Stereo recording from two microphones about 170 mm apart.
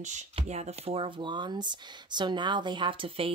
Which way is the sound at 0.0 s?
40° right (ahead or behind).